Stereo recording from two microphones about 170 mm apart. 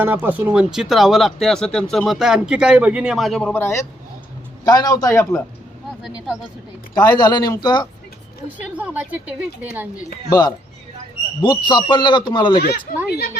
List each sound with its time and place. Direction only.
0.0 s speech: 10° right (ahead or behind); by 5.4 s 20° left (ahead or behind)
6.0 s speech: 5° right (ahead or behind)
6.9 s speech: 25° left (ahead or behind)
8.8 s a woman's voice: 10° right (ahead or behind)
10.2 s speech: 25° left (ahead or behind)
12.5 s speech: 65° left (ahead or behind)